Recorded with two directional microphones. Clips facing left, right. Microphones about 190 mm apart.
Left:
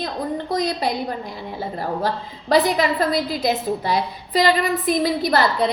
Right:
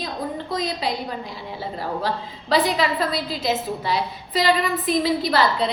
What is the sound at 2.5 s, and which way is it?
Speech, 50° left (ahead or behind).